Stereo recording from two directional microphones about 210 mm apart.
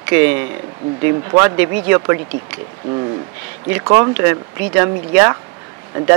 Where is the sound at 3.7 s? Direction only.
15° right (ahead or behind).